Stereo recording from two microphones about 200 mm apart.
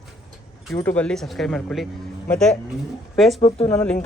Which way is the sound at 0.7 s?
10° left (ahead or behind).